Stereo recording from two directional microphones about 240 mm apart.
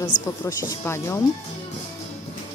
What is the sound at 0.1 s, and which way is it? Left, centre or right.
Speech, left.